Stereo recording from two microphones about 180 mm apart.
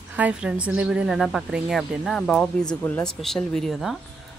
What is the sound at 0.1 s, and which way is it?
Speech, 5° right (ahead or behind).